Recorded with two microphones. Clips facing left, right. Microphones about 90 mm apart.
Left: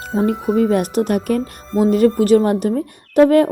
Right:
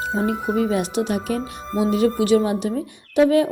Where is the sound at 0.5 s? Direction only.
50° left (ahead or behind).